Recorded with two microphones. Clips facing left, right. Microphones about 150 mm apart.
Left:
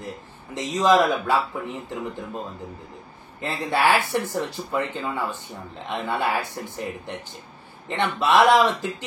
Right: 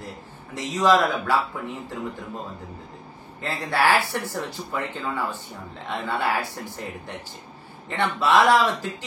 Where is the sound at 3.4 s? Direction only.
20° left (ahead or behind).